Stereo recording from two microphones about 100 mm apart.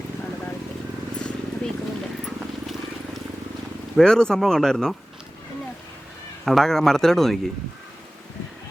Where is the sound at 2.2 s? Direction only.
Centre (ahead or behind).